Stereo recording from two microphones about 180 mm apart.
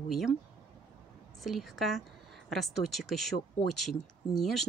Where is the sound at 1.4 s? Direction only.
Centre (ahead or behind).